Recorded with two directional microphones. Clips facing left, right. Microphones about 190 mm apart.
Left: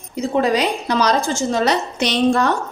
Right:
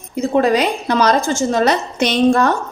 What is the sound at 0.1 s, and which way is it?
Speech, 50° right (ahead or behind).